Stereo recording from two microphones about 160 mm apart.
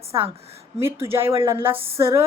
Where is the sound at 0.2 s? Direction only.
40° right (ahead or behind).